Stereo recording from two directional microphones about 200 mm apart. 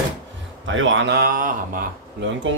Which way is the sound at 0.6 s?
70° right (ahead or behind).